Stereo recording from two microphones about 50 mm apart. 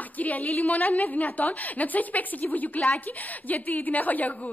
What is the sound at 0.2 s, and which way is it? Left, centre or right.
A woman's voice, left.